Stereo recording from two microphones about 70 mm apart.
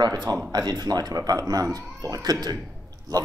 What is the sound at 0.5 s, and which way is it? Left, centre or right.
Speech, right.